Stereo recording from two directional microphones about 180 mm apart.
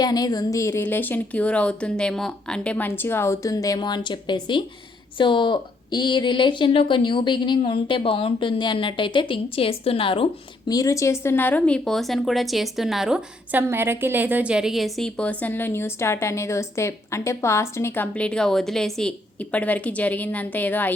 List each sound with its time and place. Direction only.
0.0 s speech: 20° left (ahead or behind)
10.7 s speech: 20° left (ahead or behind)